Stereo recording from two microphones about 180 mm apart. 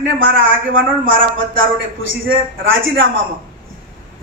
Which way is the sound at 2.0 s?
90° right.